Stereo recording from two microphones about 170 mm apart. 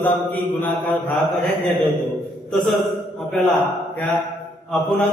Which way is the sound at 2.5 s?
Centre (ahead or behind).